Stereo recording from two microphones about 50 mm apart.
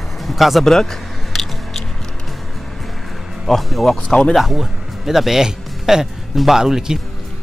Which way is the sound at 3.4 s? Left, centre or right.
Centre.